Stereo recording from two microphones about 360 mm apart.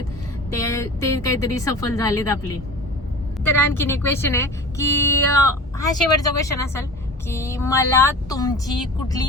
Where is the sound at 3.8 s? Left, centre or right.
Centre.